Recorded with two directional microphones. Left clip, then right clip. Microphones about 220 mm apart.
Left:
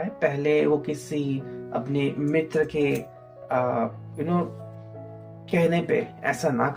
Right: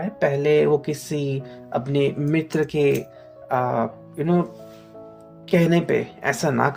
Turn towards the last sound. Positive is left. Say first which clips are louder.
# right 3 dB
turn(degrees=-50)  # may be behind; listen again after turning